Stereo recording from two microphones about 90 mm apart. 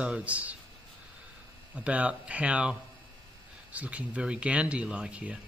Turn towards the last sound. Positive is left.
turn(degrees=-15)  # may be behind; listen again after turning